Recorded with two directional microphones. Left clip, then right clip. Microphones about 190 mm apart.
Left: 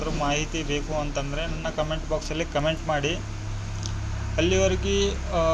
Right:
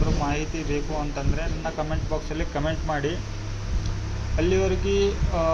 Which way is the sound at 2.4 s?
25° left (ahead or behind).